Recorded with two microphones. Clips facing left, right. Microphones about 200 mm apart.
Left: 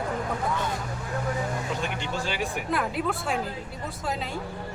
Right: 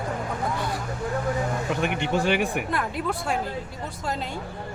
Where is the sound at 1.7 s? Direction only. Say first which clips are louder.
Right 6 dB; 60° right (ahead or behind).